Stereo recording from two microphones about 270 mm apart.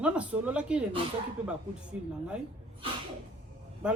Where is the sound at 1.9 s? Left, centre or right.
Centre.